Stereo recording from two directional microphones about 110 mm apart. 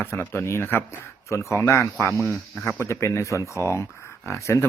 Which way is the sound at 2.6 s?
25° left (ahead or behind).